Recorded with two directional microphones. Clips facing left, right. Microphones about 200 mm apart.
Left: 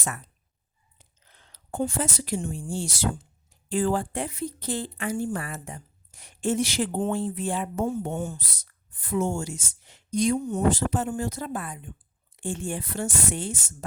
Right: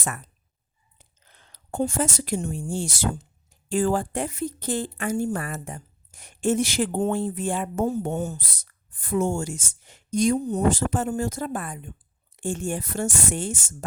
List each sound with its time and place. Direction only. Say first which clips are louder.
1.5 s speech: right 3 dB; 45° right (ahead or behind)